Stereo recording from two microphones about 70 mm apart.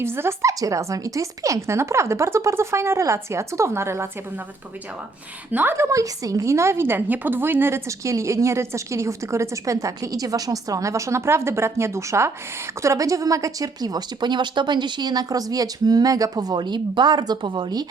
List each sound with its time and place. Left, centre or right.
0.0 s a woman's voice: right
0.4 s a woman's voice: right
5.5 s a woman's voice: right
5.7 s a woman's voice: right
7.9 s a woman's voice: right